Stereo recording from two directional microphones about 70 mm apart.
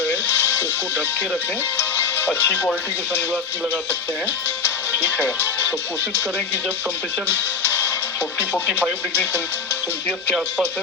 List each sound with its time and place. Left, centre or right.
1.8 s music: left
5.2 s speech: left